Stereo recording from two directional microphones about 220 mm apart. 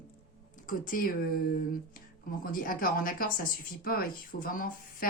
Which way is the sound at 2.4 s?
40° left (ahead or behind).